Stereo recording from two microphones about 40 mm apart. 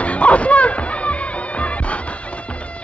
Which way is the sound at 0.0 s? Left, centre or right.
Left.